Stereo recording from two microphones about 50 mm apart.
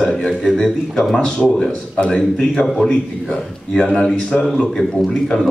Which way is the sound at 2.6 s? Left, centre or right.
Centre.